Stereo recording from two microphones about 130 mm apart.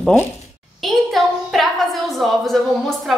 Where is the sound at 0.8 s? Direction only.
Centre (ahead or behind).